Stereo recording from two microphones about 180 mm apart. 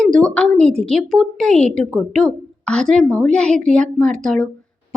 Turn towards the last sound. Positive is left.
turn(degrees=5)  # may be behind; listen again after turning